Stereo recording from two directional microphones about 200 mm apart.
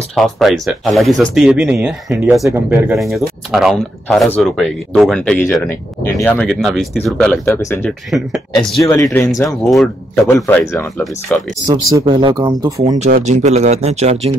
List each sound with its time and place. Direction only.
0.1 s speech: centre (ahead or behind)
8.1 s speech: centre (ahead or behind)
8.8 s speech: 15° left (ahead or behind)
11.6 s speech: 25° right (ahead or behind)
13.0 s speech: 35° right (ahead or behind)